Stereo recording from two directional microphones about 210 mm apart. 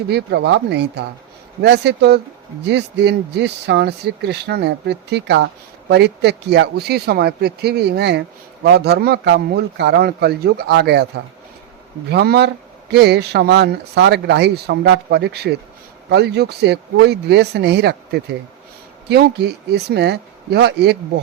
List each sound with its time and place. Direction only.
0.1 s speech: 55° right (ahead or behind)
12.0 s speech: 50° right (ahead or behind)